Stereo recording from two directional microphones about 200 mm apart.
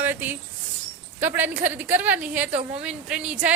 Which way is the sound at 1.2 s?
10° right (ahead or behind).